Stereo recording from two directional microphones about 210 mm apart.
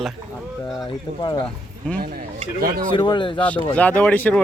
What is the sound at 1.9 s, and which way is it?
Speech, 45° right (ahead or behind).